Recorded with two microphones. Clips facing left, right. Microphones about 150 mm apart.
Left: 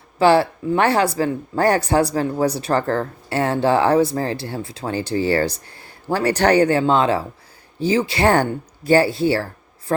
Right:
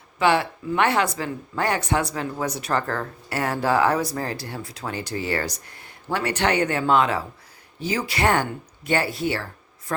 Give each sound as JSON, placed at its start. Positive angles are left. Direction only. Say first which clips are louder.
{"t": 0.2, "sound": "speech", "louder": "left 6 dB", "side_deg": 35}